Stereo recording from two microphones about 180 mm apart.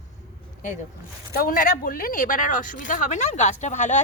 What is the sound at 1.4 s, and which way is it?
Speech, 50° left (ahead or behind).